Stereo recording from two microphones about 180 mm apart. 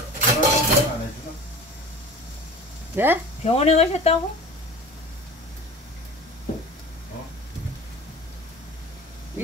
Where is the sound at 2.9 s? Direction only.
10° right (ahead or behind).